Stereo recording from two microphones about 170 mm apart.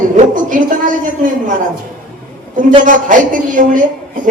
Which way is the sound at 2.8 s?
50° right (ahead or behind).